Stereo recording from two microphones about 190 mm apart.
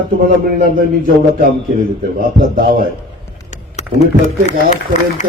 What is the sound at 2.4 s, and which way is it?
Speech, 45° right (ahead or behind).